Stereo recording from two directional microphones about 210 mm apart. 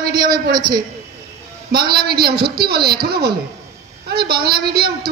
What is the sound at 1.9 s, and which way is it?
A woman's voice, 50° right (ahead or behind).